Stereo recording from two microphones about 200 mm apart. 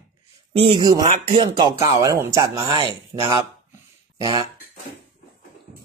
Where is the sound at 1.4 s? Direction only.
25° right (ahead or behind).